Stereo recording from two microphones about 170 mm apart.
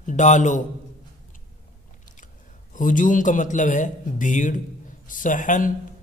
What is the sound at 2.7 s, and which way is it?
A man's voice, 50° left (ahead or behind).